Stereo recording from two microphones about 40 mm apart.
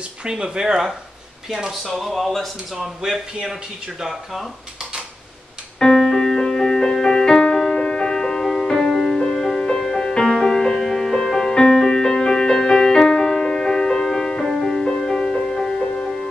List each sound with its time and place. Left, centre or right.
0.2 s speech: right
1.7 s speech: centre
5.9 s music: centre
11.5 s music: centre